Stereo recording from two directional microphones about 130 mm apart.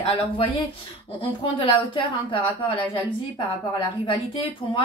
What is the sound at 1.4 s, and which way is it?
Speech, 40° left (ahead or behind).